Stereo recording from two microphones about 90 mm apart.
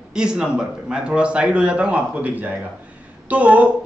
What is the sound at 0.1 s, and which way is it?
A man's voice, 10° right (ahead or behind).